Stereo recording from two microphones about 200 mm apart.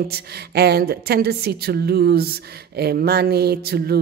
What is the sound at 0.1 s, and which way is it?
A woman's voice, 50° right (ahead or behind).